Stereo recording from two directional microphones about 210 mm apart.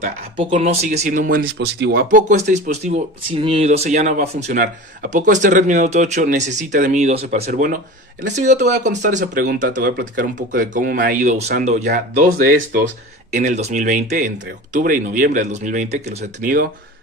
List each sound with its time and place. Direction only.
0.0 s speech: 35° right (ahead or behind)